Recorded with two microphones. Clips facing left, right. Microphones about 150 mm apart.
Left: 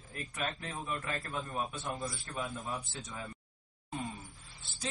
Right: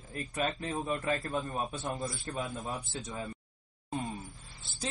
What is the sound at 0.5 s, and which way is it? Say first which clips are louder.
Speech: right 5 dB; 30° right (ahead or behind).